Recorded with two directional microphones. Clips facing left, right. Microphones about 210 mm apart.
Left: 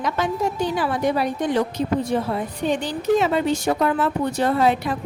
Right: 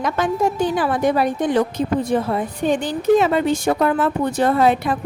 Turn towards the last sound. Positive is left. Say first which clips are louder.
# right 3 dB
turn(degrees=-55)  # may be behind; listen again after turning